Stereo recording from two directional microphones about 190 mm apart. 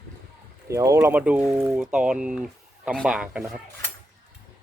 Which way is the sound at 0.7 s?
15° right (ahead or behind).